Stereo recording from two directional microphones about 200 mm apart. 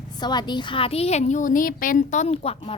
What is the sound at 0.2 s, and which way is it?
A woman's voice, 20° left (ahead or behind).